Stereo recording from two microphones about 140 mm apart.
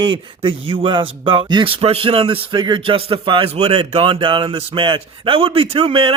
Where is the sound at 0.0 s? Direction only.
35° right (ahead or behind).